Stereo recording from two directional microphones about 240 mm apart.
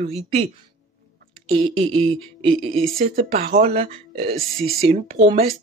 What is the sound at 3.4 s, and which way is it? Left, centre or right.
Speech, right.